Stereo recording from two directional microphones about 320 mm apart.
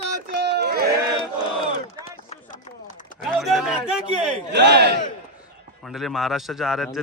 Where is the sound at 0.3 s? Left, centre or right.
Right.